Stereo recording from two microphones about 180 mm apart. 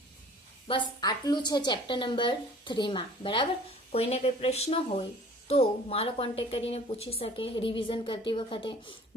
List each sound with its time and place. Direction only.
0.7 s speech: 25° left (ahead or behind)